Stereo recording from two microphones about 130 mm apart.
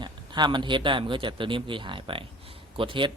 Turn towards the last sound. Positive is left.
turn(degrees=-40)  # may be behind; listen again after turning